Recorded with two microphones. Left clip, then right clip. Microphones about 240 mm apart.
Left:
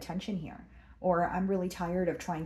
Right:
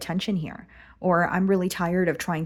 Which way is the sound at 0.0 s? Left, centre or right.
Right.